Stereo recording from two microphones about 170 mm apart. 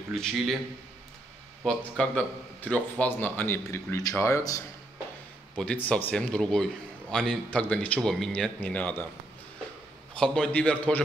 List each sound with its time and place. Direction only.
0.1 s a man's voice: 5° left (ahead or behind)
1.6 s a man's voice: 5° left (ahead or behind)
5.6 s a man's voice: 5° left (ahead or behind)
10.1 s a man's voice: 5° left (ahead or behind)